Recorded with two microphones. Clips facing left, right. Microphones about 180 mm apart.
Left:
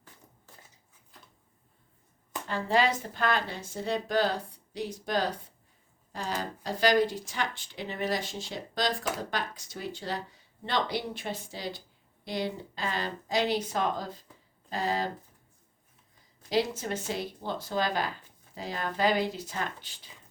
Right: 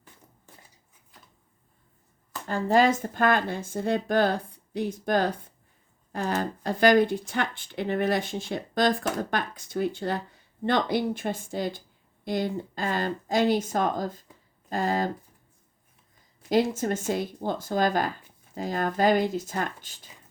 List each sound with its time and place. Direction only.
2.5 s speech: 45° right (ahead or behind)
16.5 s speech: 50° right (ahead or behind)